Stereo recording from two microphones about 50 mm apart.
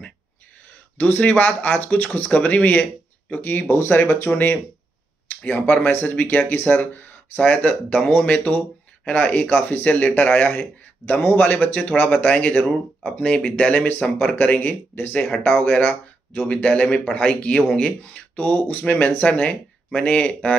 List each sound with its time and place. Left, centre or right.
0.9 s speech: left
3.6 s speech: left
5.4 s speech: left
9.0 s speech: left
15.7 s speech: left
18.4 s speech: left